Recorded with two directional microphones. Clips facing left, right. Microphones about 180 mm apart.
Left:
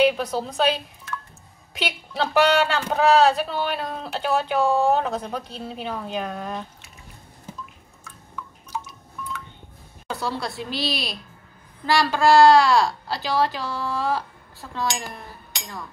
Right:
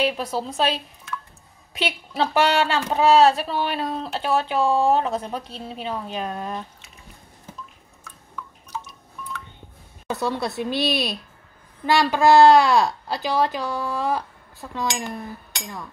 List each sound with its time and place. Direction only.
0.0 s speech: centre (ahead or behind)
10.0 s speech: 20° right (ahead or behind)